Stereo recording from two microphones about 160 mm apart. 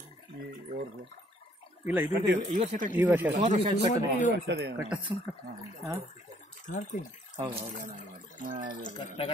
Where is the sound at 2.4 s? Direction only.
50° right (ahead or behind).